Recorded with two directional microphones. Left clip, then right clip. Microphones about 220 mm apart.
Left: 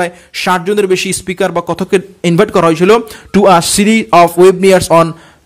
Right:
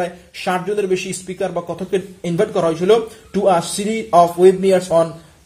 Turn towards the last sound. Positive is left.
turn(degrees=45)  # may be behind; listen again after turning